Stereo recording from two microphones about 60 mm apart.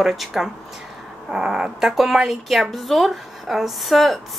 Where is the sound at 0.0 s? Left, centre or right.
Centre.